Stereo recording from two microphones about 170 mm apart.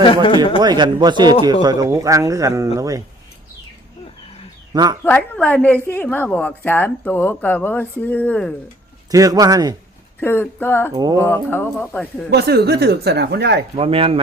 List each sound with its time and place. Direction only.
0.6 s speech: 25° right (ahead or behind)
4.7 s speech: 25° right (ahead or behind)
5.0 s a woman's voice: 10° left (ahead or behind)
9.0 s speech: 20° right (ahead or behind)
10.2 s a woman's voice: 10° left (ahead or behind)
10.9 s speech: 25° right (ahead or behind)
11.2 s a woman's voice: 15° left (ahead or behind)
12.3 s speech: 70° right (ahead or behind)
13.7 s speech: 35° right (ahead or behind)